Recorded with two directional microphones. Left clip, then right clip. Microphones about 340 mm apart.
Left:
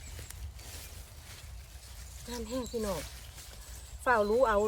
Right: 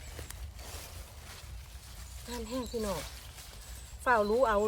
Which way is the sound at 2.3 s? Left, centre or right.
Centre.